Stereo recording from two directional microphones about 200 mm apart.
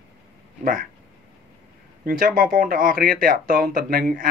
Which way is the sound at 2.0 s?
45° right (ahead or behind).